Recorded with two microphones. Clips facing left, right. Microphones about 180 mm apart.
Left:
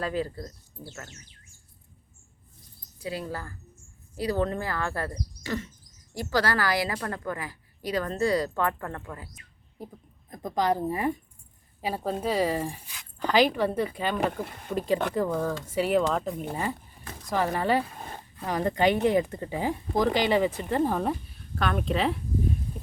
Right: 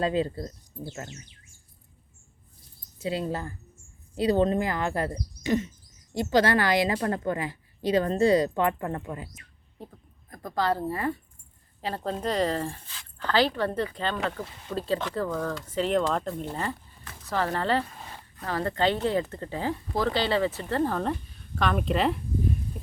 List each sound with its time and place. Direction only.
0.0 s a woman's voice: 20° right (ahead or behind)
3.0 s a woman's voice: 25° right (ahead or behind)
5.4 s a sound: 20° right (ahead or behind)
6.1 s a woman's voice: 20° right (ahead or behind)
9.8 s speech: 10° left (ahead or behind)
14.4 s speech: 55° left (ahead or behind)
15.1 s speech: 15° left (ahead or behind)
17.9 s a sound: 50° left (ahead or behind)
18.4 s speech: 15° left (ahead or behind); by 22.2 s centre (ahead or behind)